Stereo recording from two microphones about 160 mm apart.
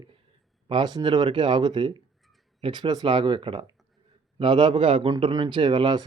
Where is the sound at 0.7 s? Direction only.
30° right (ahead or behind).